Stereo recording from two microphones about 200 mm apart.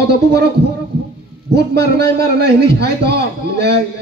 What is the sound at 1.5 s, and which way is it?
A man's voice, 55° right (ahead or behind).